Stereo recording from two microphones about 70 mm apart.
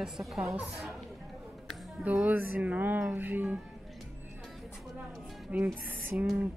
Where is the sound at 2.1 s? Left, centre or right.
Right.